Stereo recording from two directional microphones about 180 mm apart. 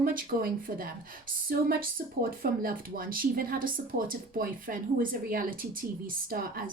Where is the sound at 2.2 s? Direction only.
55° right (ahead or behind).